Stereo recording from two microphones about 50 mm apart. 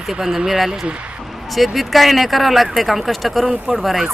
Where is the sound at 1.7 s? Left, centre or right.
Centre.